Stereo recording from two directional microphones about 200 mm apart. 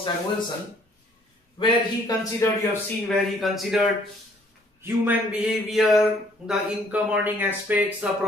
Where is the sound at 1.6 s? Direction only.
25° left (ahead or behind).